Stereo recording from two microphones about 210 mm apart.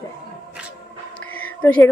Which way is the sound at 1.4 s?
10° left (ahead or behind).